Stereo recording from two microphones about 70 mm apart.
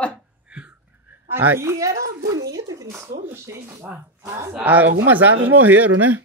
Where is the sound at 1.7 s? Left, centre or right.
Right.